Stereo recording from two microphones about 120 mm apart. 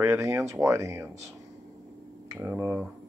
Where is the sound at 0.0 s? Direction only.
25° right (ahead or behind).